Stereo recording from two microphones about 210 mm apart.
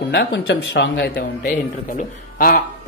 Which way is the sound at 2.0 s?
40° left (ahead or behind).